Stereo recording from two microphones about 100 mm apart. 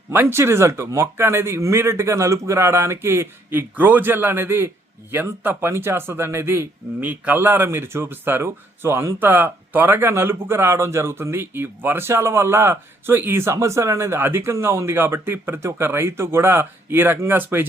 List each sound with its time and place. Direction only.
0.1 s a man's voice: 20° right (ahead or behind)